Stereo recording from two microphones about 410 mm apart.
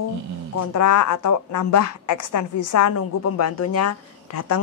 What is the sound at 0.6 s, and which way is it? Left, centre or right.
A woman's voice, left.